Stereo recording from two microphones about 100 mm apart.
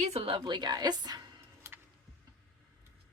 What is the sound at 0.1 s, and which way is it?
Speech, 80° right.